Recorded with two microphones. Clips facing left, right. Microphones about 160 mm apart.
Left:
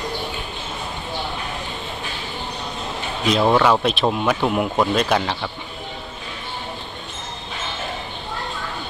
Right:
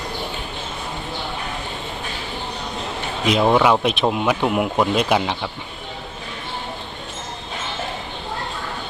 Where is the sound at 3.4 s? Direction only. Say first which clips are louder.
Right 1 dB; 5° right (ahead or behind).